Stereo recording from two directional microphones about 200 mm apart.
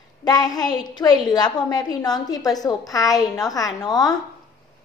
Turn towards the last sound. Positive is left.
turn(degrees=20)  # may be behind; listen again after turning